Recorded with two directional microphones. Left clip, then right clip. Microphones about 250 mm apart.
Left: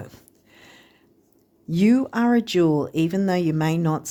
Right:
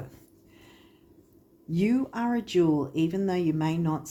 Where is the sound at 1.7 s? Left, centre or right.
Left.